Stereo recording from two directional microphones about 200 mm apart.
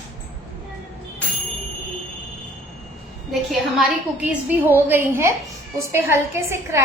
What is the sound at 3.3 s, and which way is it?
A woman's voice, centre (ahead or behind).